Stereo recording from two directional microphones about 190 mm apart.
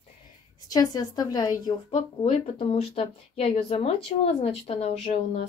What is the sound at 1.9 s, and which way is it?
Speech, 30° left (ahead or behind).